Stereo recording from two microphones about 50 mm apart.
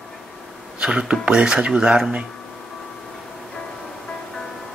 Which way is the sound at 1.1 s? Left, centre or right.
Right.